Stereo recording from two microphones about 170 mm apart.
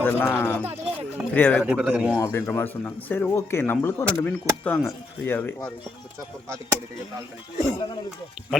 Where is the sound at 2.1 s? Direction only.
15° left (ahead or behind).